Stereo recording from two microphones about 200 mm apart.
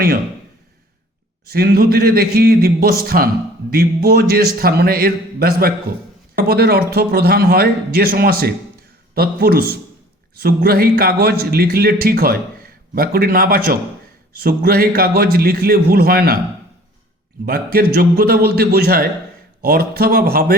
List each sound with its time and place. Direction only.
1.5 s a man's voice: 50° right (ahead or behind)
17.4 s a man's voice: 50° right (ahead or behind)